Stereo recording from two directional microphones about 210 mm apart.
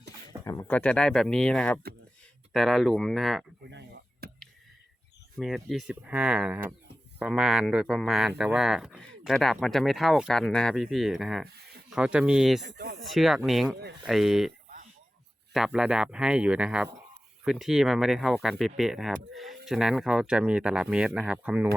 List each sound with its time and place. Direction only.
0.4 s speech: 15° left (ahead or behind)
3.7 s a sound: 55° right (ahead or behind)
5.4 s speech: centre (ahead or behind)
12.6 s speech: 50° right (ahead or behind)
13.0 s speech: centre (ahead or behind)
15.5 s speech: centre (ahead or behind)